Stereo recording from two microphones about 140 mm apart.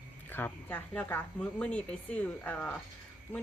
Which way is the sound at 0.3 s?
15° left (ahead or behind).